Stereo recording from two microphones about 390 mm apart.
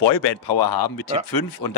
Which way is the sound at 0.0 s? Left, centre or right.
Left.